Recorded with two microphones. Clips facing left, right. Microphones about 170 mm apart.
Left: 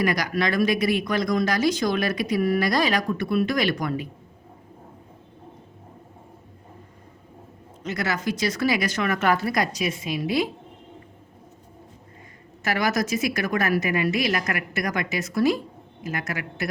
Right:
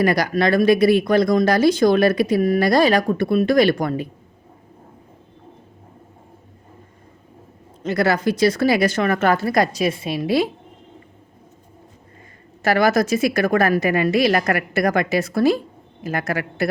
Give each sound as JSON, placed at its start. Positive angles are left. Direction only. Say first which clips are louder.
{"t": 0.0, "sound": "speech", "louder": "right 6 dB", "side_deg": -30}
{"t": 7.9, "sound": "a woman's voice", "louder": "right 8 dB", "side_deg": -35}
{"t": 12.6, "sound": "speech", "louder": "right 7 dB", "side_deg": -30}